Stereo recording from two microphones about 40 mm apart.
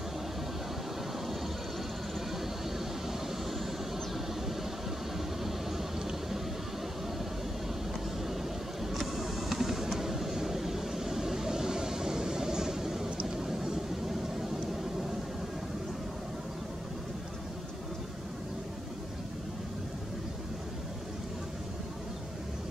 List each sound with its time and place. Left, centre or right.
3.1 s vehicle: centre
5.1 s vehicle: centre
8.9 s vehicle: centre